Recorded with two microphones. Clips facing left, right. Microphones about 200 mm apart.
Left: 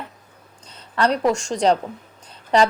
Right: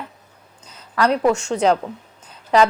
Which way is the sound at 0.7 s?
30° left (ahead or behind).